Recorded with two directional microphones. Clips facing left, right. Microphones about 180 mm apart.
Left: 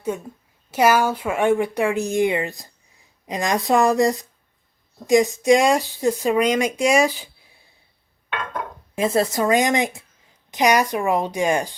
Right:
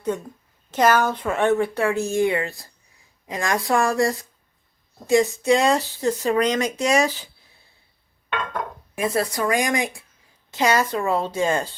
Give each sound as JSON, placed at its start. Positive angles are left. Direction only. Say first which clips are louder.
{"t": 0.0, "sound": "a woman's voice", "louder": "right 1 dB", "side_deg": 10}
{"t": 9.0, "sound": "speech", "louder": "left 3 dB", "side_deg": 25}